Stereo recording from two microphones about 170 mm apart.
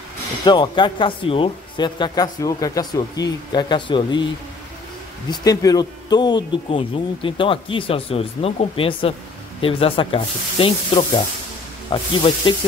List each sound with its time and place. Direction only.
0.5 s speech: 25° left (ahead or behind)
5.3 s speech: 20° left (ahead or behind)